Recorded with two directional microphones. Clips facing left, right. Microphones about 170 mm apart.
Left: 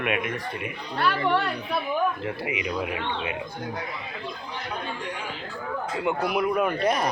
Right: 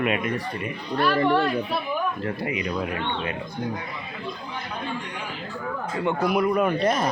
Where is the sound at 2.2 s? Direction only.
10° left (ahead or behind).